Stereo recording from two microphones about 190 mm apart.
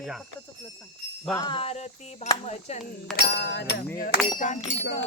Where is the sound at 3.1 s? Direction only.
60° left (ahead or behind).